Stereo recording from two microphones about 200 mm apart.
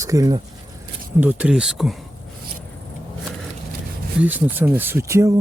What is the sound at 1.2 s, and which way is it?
Speech, 5° right (ahead or behind).